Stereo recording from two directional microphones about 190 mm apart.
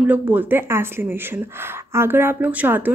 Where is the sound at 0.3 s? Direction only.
10° right (ahead or behind).